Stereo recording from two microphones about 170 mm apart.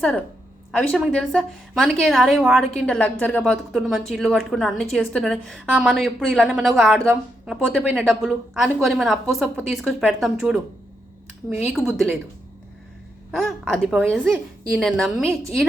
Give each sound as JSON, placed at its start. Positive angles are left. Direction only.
{"t": 0.7, "sound": "a woman's voice", "side_deg": 5}
{"t": 13.3, "sound": "a woman's voice", "side_deg": 0}